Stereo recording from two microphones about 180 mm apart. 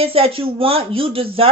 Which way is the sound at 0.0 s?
30° right (ahead or behind).